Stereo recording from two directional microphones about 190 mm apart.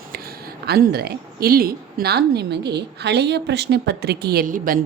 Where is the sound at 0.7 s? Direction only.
55° right (ahead or behind).